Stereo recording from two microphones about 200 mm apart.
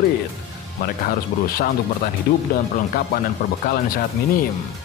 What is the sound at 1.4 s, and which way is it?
Speech, 45° left (ahead or behind).